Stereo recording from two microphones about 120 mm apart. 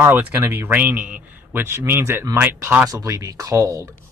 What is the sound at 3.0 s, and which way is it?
Speech, 25° right (ahead or behind).